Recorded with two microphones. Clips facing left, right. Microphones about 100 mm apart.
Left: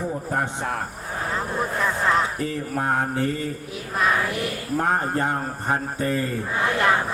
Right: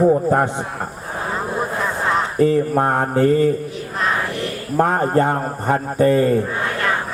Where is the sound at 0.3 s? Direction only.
85° right.